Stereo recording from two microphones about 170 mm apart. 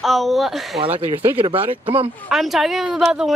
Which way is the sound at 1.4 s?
35° right (ahead or behind).